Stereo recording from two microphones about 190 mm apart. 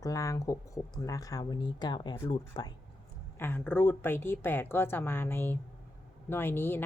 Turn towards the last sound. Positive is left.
turn(degrees=10)  # may be behind; listen again after turning